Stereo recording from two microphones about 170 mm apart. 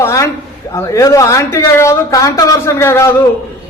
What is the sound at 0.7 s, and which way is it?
A man's voice, 15° left (ahead or behind).